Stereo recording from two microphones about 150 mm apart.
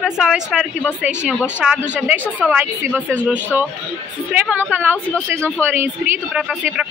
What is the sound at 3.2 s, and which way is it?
Speech, 10° left (ahead or behind).